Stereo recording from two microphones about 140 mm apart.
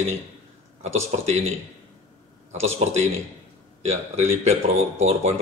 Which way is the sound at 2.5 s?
50° right (ahead or behind).